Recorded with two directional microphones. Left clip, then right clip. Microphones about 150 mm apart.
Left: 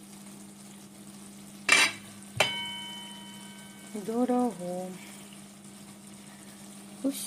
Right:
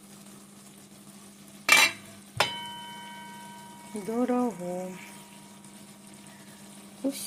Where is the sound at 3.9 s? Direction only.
5° right (ahead or behind).